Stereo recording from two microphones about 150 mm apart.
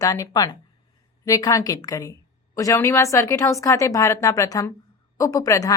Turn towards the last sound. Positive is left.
turn(degrees=20)  # may be behind; listen again after turning